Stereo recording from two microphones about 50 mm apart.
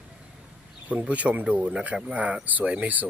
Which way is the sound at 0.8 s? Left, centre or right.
Right.